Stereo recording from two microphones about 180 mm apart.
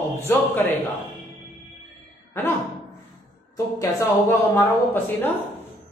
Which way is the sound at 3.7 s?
15° left (ahead or behind).